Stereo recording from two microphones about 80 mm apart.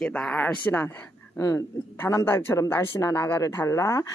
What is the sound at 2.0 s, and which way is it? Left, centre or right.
Speech, left.